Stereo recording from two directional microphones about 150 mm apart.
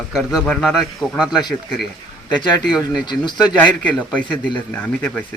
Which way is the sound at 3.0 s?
30° left (ahead or behind).